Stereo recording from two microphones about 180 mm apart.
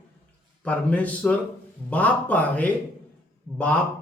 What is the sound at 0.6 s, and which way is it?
Speech, 5° left (ahead or behind).